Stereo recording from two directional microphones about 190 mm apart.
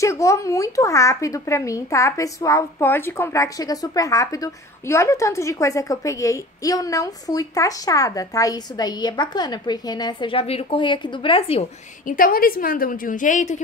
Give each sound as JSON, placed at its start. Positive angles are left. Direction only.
{"t": 0.0, "sound": "speech", "side_deg": 15}
{"t": 12.1, "sound": "a woman's voice", "side_deg": 50}